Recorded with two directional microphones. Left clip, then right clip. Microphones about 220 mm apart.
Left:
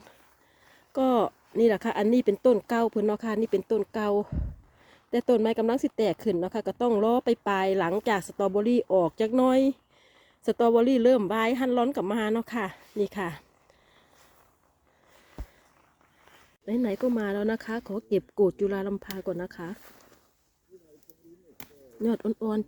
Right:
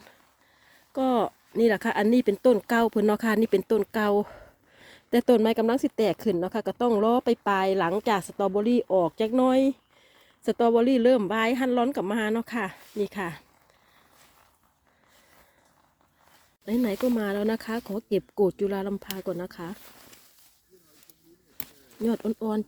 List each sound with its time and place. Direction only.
0.9 s a woman's voice: centre (ahead or behind)
16.6 s a woman's voice: 10° right (ahead or behind)
22.0 s speech: 5° right (ahead or behind)